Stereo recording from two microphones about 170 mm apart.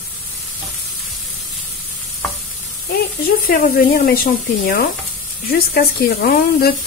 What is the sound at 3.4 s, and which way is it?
Speech, 60° left (ahead or behind).